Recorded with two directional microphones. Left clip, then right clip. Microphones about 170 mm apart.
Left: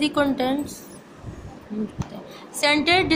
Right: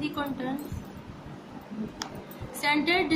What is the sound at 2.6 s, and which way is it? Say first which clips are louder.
Speech: left 6 dB; 45° left (ahead or behind).